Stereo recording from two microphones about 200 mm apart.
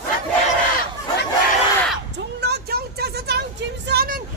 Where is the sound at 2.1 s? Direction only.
55° right (ahead or behind).